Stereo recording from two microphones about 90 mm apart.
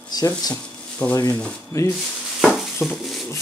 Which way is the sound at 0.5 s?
20° left (ahead or behind).